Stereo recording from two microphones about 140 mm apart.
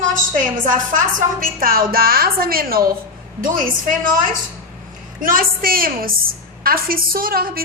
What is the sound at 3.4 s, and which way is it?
A woman's voice, 80° right.